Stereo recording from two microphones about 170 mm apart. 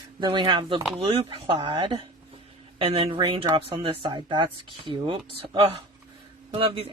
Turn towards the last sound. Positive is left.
turn(degrees=-35)  # may be behind; listen again after turning